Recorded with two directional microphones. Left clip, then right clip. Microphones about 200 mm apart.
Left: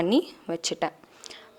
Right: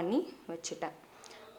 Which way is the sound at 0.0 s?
40° left (ahead or behind).